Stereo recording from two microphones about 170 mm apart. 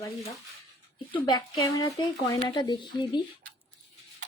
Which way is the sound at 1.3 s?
25° left (ahead or behind).